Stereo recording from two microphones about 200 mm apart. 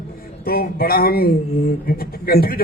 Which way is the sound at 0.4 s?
50° left (ahead or behind).